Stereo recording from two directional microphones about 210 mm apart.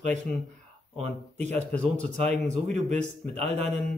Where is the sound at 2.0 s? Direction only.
35° right (ahead or behind).